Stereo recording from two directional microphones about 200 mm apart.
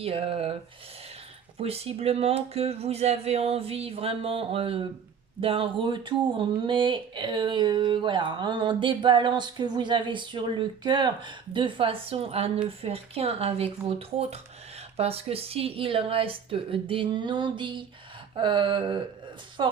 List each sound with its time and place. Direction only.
0.0 s speech: 30° right (ahead or behind)
1.6 s a woman's voice: 30° right (ahead or behind)